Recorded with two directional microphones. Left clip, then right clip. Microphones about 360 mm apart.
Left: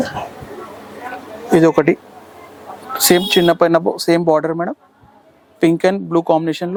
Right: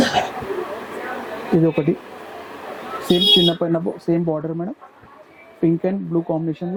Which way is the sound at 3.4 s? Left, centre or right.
Centre.